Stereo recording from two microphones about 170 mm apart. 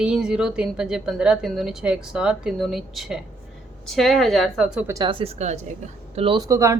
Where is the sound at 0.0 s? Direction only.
5° right (ahead or behind).